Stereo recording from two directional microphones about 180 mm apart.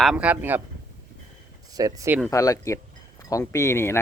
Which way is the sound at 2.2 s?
15° left (ahead or behind).